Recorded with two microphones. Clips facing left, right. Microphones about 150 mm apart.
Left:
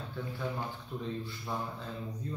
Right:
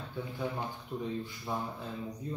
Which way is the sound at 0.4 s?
15° right (ahead or behind).